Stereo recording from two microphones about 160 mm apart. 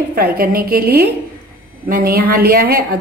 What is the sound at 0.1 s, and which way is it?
A woman's voice, 65° right (ahead or behind).